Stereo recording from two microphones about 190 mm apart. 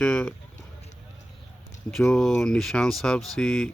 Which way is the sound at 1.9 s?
Centre (ahead or behind).